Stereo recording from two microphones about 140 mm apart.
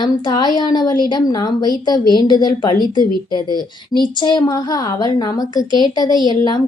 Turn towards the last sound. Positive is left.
turn(degrees=30)  # may be behind; listen again after turning